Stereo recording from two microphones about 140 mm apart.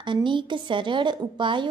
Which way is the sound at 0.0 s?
35° right (ahead or behind).